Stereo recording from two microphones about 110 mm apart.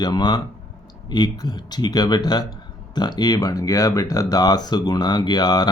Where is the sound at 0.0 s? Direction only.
40° left (ahead or behind).